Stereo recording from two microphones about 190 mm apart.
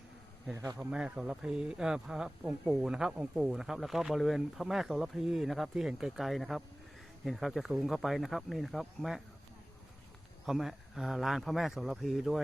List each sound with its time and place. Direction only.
0.5 s speech: 15° right (ahead or behind)
0.8 s speech: 5° right (ahead or behind)
10.4 s speech: centre (ahead or behind)